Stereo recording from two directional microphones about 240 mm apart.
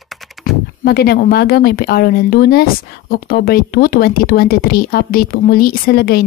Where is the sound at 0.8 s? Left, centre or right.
Left.